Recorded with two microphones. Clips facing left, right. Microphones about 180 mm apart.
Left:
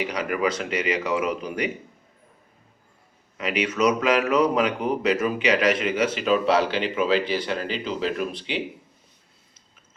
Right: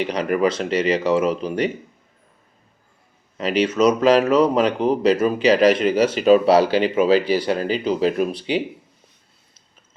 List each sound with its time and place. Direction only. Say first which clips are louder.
0.6 s speech: right 6 dB; 30° right (ahead or behind)
3.3 s speech: right 6 dB; 35° right (ahead or behind)